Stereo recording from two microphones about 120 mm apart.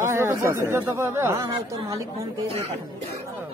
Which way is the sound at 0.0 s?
20° right (ahead or behind).